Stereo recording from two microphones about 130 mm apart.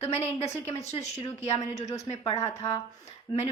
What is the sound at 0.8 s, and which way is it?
A woman's voice, 55° left (ahead or behind).